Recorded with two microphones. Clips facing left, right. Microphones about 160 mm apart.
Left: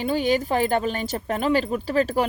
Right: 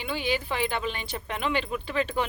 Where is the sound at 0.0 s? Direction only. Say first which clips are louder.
Left 8 dB; 40° left (ahead or behind).